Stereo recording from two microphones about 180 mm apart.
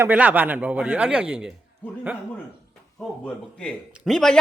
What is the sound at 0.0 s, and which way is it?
Speech, 10° right (ahead or behind).